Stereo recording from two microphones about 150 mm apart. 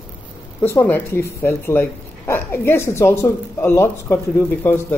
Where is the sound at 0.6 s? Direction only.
15° left (ahead or behind).